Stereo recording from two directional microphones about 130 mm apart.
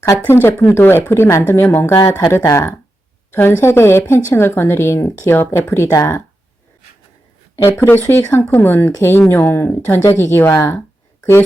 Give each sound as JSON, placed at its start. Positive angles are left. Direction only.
{"t": 0.3, "sound": "speech", "side_deg": 15}
{"t": 7.5, "sound": "speech", "side_deg": 20}